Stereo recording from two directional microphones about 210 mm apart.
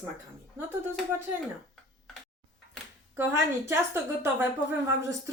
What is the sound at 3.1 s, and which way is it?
Speech, 10° right (ahead or behind).